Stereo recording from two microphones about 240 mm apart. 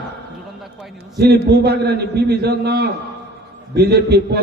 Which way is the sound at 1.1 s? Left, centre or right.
Right.